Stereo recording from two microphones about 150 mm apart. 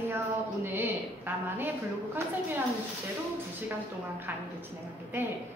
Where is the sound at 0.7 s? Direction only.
15° right (ahead or behind).